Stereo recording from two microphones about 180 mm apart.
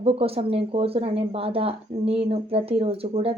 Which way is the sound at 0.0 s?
30° right (ahead or behind).